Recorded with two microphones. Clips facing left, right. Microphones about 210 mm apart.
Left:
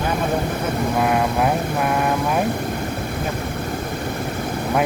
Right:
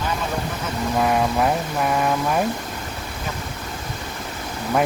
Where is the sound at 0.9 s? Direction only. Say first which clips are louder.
Right 1 dB; 5° left (ahead or behind).